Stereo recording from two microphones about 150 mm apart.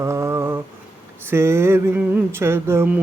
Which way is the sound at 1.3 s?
15° right (ahead or behind).